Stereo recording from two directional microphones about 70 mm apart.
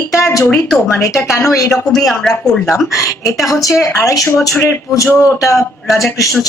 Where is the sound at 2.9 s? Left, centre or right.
Left.